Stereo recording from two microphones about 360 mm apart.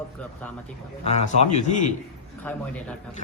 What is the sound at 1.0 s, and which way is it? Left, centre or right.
Speech, centre.